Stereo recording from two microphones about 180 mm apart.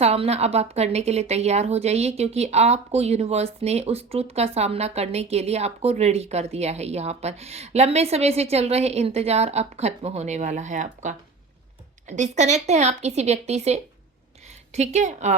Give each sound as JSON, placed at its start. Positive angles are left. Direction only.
{"t": 0.0, "sound": "a woman's voice", "side_deg": -35}